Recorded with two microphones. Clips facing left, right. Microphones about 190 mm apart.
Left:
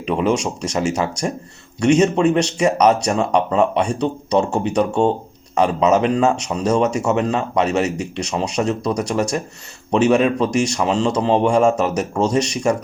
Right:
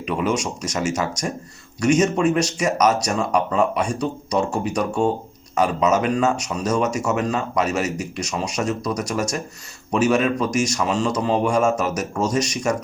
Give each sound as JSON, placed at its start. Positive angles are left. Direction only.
{"t": 0.0, "sound": "speech", "side_deg": 30}